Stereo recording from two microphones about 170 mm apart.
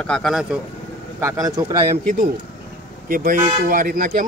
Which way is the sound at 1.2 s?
20° right (ahead or behind).